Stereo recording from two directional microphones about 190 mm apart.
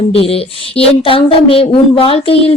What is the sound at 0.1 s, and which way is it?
Speech, 30° left (ahead or behind).